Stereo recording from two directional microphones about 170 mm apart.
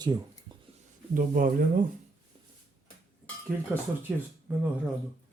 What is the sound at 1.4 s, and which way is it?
Speech, 55° right (ahead or behind).